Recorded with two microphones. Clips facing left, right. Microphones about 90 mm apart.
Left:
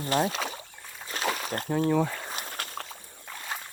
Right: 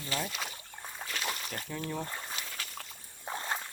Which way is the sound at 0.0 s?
45° left (ahead or behind).